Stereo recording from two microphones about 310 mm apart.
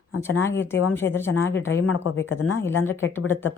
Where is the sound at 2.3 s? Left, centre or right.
Left.